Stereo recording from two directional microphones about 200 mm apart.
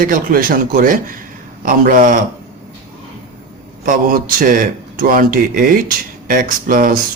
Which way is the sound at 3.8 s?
45° right (ahead or behind).